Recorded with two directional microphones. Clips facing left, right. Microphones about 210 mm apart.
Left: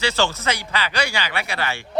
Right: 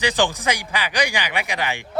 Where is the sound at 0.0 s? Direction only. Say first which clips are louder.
Right 1 dB; 15° right (ahead or behind).